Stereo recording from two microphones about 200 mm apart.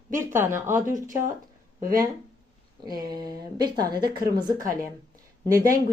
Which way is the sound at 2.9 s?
20° right (ahead or behind).